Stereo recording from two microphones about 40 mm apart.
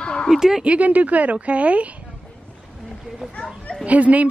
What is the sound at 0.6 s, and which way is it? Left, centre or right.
Speech, right.